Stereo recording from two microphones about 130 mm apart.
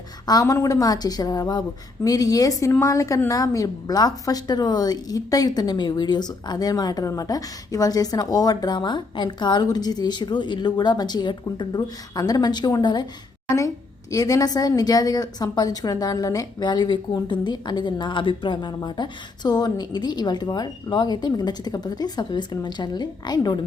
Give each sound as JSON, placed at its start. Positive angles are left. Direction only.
{"t": 0.3, "sound": "a woman's voice", "side_deg": 25}
{"t": 14.1, "sound": "a woman's voice", "side_deg": 25}